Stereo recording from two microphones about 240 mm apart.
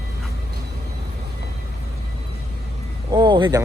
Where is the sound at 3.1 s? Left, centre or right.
Centre.